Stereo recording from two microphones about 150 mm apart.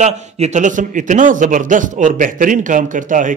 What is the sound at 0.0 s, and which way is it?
A man's voice, 50° right (ahead or behind).